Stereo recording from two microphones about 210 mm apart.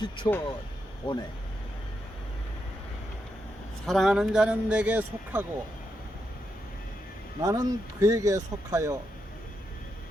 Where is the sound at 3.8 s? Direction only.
Centre (ahead or behind).